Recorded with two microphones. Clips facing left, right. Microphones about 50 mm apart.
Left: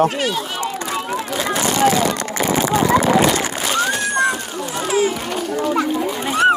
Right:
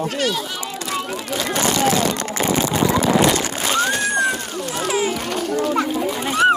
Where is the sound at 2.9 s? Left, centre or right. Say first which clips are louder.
Left 5 dB; left.